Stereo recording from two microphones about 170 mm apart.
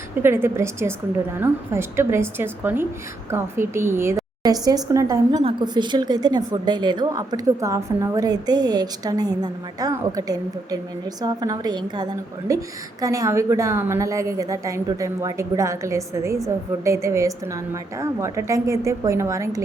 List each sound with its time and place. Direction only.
0.2 s a woman's voice: 15° right (ahead or behind)
5.4 s a woman's voice: 30° right (ahead or behind)